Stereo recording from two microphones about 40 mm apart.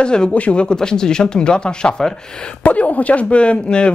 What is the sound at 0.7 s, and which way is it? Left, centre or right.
Speech, centre.